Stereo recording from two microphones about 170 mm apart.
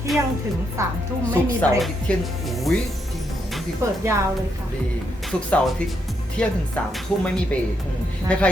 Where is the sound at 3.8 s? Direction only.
15° right (ahead or behind).